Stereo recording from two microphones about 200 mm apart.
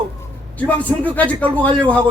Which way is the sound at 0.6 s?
10° left (ahead or behind).